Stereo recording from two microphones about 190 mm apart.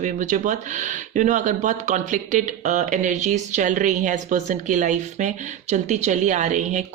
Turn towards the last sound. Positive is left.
turn(degrees=-40)  # may be behind; listen again after turning